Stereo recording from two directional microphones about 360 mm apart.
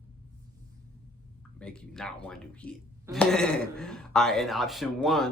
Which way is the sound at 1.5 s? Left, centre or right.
Centre.